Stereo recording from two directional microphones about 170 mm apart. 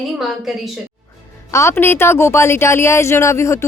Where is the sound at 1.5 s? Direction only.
15° left (ahead or behind).